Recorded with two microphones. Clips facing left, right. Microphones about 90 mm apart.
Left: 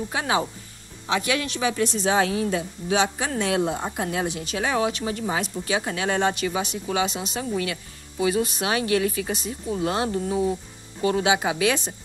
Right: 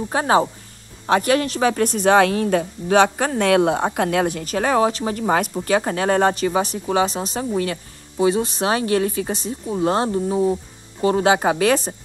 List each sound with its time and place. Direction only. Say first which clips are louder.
0.1 s a woman's voice: right 9 dB; 40° right (ahead or behind)